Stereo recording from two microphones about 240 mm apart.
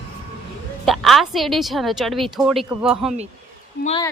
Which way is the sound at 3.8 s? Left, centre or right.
Left.